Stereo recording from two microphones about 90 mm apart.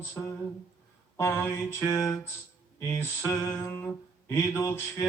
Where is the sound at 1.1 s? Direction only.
30° left (ahead or behind).